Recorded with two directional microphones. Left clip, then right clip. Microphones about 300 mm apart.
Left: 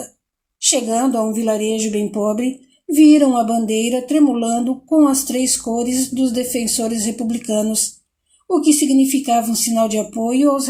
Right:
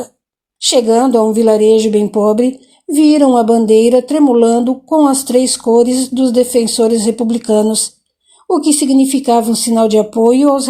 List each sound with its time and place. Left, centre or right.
0.6 s speech: right